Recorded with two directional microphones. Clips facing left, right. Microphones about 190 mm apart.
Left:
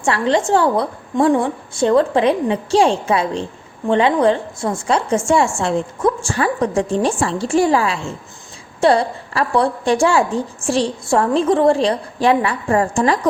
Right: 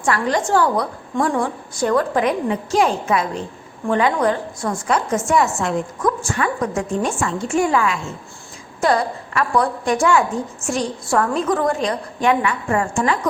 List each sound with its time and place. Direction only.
0.0 s a woman's voice: 25° left (ahead or behind)